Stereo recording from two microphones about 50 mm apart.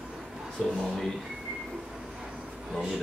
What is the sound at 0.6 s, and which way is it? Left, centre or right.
Speech, centre.